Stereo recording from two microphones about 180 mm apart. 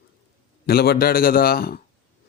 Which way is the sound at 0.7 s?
60° left (ahead or behind).